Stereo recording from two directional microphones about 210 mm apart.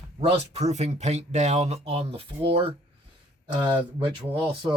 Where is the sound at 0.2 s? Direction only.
30° right (ahead or behind).